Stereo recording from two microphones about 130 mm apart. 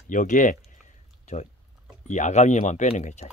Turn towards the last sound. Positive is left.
turn(degrees=65)  # may be behind; listen again after turning